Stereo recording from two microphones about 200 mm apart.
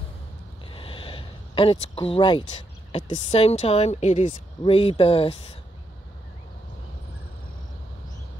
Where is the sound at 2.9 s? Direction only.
30° left (ahead or behind).